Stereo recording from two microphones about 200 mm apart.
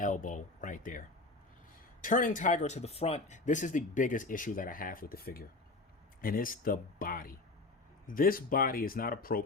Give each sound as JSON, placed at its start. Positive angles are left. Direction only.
{"t": 0.0, "sound": "speech", "side_deg": 40}